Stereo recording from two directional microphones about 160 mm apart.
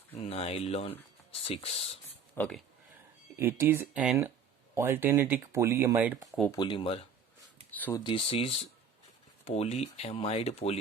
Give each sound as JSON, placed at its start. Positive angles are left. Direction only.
{"t": 0.1, "sound": "speech", "side_deg": 40}
{"t": 2.3, "sound": "speech", "side_deg": 10}
{"t": 3.3, "sound": "speech", "side_deg": -15}
{"t": 6.5, "sound": "speech", "side_deg": 30}
{"t": 7.7, "sound": "speech", "side_deg": 10}
{"t": 7.9, "sound": "speech", "side_deg": 30}